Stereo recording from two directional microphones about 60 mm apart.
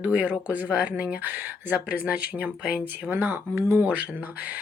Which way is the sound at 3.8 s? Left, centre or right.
Right.